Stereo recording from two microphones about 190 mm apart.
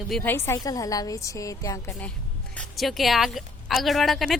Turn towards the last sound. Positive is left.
turn(degrees=0)  # may be behind; listen again after turning